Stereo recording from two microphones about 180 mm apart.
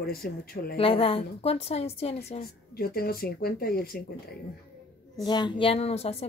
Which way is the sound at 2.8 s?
55° left (ahead or behind).